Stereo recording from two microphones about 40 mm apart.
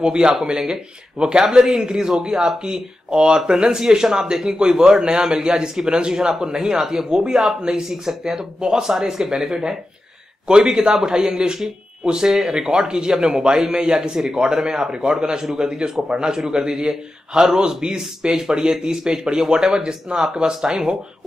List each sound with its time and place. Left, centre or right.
0.0 s speech: centre
8.8 s speech: centre